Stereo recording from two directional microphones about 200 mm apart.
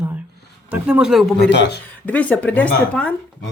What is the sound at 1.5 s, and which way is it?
Speech, 60° left (ahead or behind).